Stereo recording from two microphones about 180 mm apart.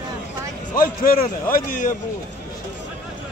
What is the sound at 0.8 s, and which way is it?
A man's voice, 50° left (ahead or behind).